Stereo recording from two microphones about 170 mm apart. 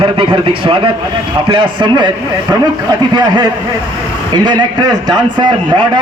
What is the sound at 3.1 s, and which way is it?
A man's voice, 25° right (ahead or behind).